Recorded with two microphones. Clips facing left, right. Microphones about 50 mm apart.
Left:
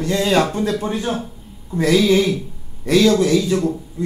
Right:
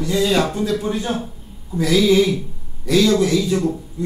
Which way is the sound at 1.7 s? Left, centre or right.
Left.